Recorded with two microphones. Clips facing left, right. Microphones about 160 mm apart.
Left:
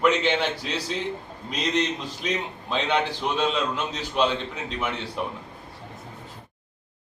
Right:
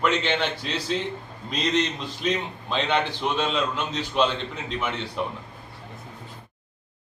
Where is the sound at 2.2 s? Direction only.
5° left (ahead or behind).